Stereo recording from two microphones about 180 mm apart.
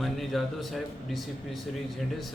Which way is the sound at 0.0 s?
Centre (ahead or behind).